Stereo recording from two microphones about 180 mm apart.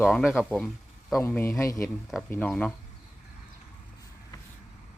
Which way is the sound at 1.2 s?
15° left (ahead or behind).